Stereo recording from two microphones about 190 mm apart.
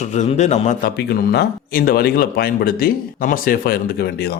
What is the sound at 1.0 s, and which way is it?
Speech, 60° left (ahead or behind).